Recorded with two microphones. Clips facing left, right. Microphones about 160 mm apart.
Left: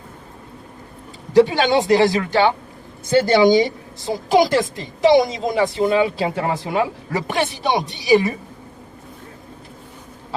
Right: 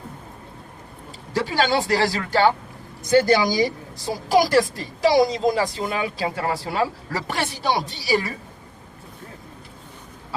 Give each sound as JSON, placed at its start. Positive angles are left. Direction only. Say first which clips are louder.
{"t": 1.3, "sound": "a woman's voice", "louder": "left 7 dB", "side_deg": 20}